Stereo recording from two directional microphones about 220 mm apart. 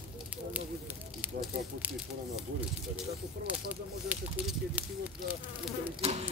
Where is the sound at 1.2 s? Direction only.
5° right (ahead or behind).